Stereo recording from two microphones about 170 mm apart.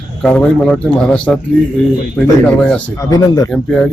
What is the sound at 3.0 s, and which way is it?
Speech, 20° left (ahead or behind).